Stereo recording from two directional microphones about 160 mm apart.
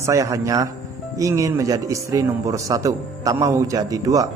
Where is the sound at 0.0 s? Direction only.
20° right (ahead or behind).